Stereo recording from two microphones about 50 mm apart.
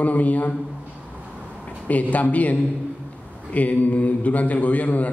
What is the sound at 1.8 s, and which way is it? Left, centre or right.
A man's voice, left.